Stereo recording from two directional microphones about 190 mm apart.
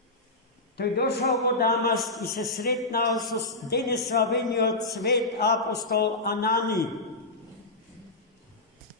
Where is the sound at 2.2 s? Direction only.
55° left (ahead or behind).